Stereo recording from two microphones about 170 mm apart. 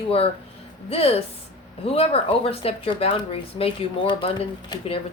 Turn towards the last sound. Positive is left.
turn(degrees=30)  # may be behind; listen again after turning